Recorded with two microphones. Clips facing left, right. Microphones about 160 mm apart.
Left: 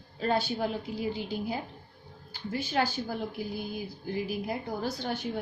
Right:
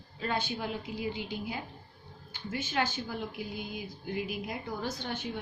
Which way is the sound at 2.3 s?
35° left (ahead or behind).